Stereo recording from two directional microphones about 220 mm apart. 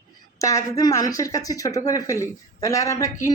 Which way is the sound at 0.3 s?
15° left (ahead or behind).